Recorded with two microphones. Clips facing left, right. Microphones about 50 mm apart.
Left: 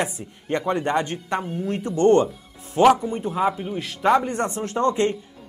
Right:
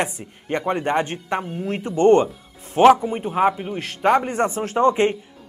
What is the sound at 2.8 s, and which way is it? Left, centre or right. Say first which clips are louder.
A man's voice: right 3 dB; right.